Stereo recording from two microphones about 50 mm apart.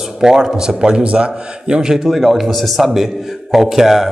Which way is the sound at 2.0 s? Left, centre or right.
Centre.